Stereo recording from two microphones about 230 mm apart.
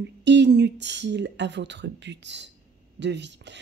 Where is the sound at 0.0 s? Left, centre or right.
Right.